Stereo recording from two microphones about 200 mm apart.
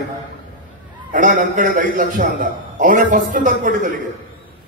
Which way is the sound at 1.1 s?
40° right (ahead or behind).